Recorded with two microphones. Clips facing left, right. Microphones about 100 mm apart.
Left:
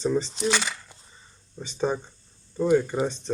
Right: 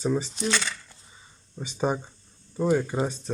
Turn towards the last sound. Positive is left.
turn(degrees=-10)  # may be behind; listen again after turning